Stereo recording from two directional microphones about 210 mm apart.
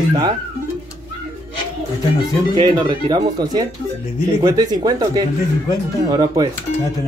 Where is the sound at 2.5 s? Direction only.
20° right (ahead or behind).